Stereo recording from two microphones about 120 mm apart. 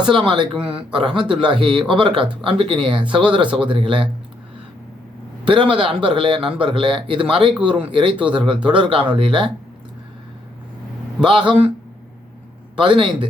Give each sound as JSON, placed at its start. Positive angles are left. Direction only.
{"t": 0.0, "sound": "speech", "side_deg": -45}
{"t": 5.5, "sound": "speech", "side_deg": -45}
{"t": 11.3, "sound": "speech", "side_deg": -40}
{"t": 12.7, "sound": "speech", "side_deg": -40}